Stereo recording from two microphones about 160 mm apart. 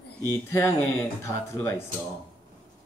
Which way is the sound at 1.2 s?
15° left (ahead or behind).